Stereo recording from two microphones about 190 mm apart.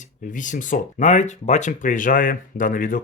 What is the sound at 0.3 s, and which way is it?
Speech, 40° left (ahead or behind).